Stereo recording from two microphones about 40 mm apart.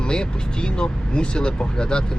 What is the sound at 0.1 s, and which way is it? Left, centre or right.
Speech, left.